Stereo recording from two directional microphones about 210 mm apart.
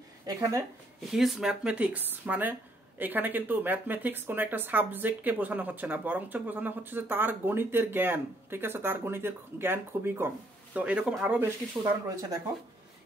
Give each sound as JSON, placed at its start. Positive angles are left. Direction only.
{"t": 0.3, "sound": "speech", "side_deg": -15}
{"t": 1.1, "sound": "speech", "side_deg": 0}